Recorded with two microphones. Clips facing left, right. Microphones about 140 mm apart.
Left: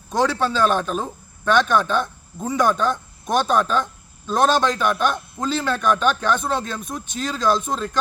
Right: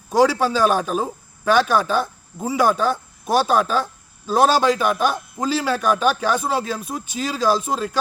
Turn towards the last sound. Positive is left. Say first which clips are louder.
# right 1 dB
turn(degrees=-10)  # may be behind; listen again after turning